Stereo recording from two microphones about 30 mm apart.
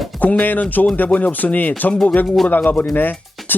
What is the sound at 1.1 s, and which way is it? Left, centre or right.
Speech, left.